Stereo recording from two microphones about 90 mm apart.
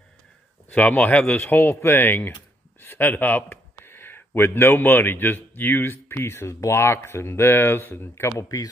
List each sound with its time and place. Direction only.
0.7 s speech: 15° left (ahead or behind); by 8.6 s 35° left (ahead or behind)